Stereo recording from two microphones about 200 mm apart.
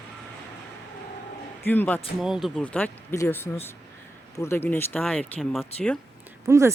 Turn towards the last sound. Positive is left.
turn(degrees=-15)  # may be behind; listen again after turning